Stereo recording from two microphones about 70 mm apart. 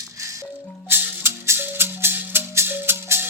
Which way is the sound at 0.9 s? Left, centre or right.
Right.